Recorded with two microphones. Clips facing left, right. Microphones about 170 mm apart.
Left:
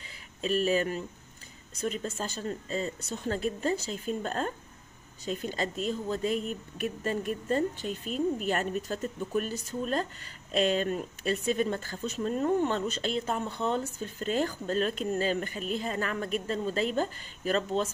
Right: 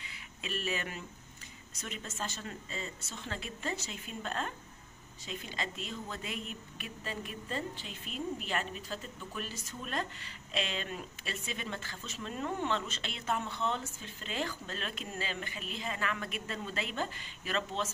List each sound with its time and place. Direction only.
0.4 s speech: 40° left (ahead or behind)